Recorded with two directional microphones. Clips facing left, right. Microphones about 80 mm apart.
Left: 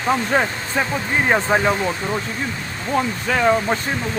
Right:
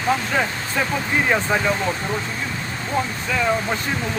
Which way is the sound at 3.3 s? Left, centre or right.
Left.